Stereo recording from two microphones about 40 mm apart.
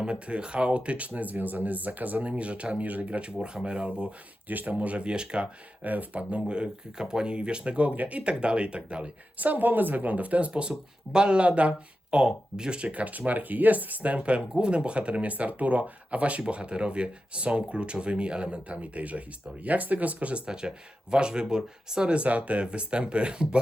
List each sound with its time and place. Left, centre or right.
0.0 s speech: right
2.3 s speech: right
4.4 s speech: right
4.8 s speech: right
5.8 s speech: right
6.5 s speech: right
9.4 s speech: right
10.5 s speech: right
12.1 s speech: right
20.4 s speech: centre
22.1 s speech: right